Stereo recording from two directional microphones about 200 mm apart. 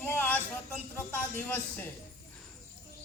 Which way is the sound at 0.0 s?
10° left (ahead or behind).